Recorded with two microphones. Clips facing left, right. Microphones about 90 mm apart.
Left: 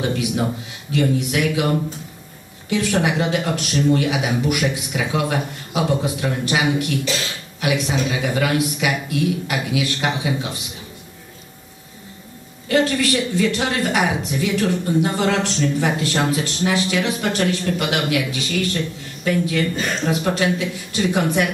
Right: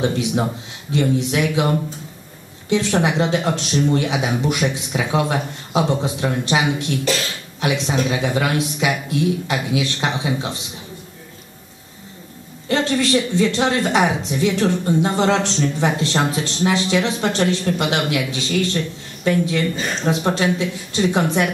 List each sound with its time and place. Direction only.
0.0 s speech: 25° right (ahead or behind)
2.7 s speech: 25° right (ahead or behind)
12.6 s speech: 25° right (ahead or behind)